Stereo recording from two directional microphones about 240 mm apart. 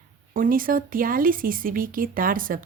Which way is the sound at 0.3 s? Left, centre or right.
Right.